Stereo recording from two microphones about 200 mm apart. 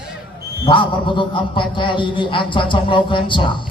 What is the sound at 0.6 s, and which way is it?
A man's voice, 25° left (ahead or behind).